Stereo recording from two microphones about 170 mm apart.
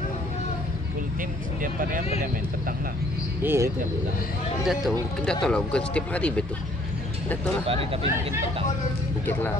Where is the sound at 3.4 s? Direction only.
15° right (ahead or behind).